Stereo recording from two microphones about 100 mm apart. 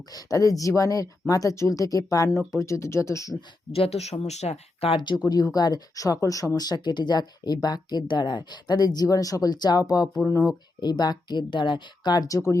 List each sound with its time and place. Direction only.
0.1 s speech: 35° left (ahead or behind)
3.7 s speech: 80° left
4.9 s speech: 45° left (ahead or behind)
12.3 s speech: 30° left (ahead or behind)